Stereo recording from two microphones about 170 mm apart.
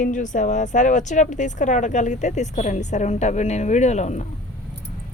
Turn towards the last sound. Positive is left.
turn(degrees=40)  # may be behind; listen again after turning